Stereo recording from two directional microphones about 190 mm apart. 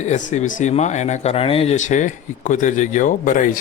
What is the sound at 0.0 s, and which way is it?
Speech, 40° left (ahead or behind).